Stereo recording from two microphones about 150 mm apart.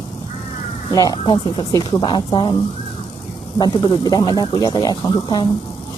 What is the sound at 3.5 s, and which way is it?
Speech, 30° left (ahead or behind).